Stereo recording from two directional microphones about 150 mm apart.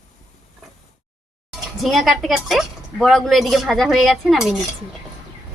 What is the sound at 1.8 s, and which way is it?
Speech, centre (ahead or behind).